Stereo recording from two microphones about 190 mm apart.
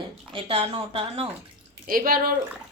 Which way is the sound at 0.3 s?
30° right (ahead or behind).